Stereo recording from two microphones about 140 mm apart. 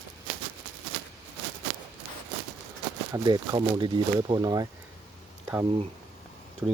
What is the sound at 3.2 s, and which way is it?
Speech, 30° right (ahead or behind).